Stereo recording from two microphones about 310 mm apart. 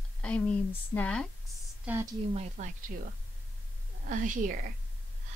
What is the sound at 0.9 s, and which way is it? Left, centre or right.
A woman's voice, centre.